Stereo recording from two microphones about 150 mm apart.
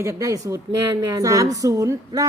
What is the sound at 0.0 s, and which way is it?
A woman's voice, 20° right (ahead or behind).